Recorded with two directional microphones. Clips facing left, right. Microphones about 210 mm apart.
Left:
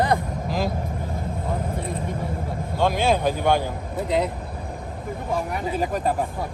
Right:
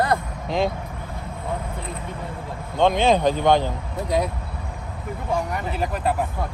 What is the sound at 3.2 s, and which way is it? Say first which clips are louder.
Speech: right 3 dB; 10° left (ahead or behind).